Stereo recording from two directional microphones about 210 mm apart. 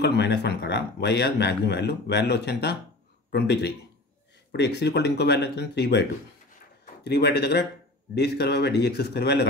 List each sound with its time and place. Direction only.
0.0 s speech: 55° left (ahead or behind)
7.1 s speech: 50° left (ahead or behind)